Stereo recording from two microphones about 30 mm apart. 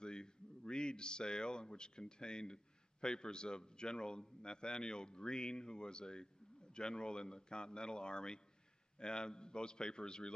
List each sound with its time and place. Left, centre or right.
0.0 s speech: left